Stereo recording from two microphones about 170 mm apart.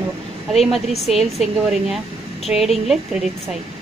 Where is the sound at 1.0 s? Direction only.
Centre (ahead or behind).